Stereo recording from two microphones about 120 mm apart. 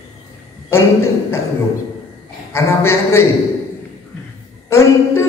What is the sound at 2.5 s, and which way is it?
Speech, 20° left (ahead or behind).